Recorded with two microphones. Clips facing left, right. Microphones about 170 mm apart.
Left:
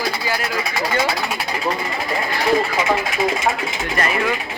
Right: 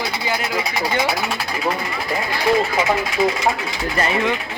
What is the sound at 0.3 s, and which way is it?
Speech, 20° right (ahead or behind).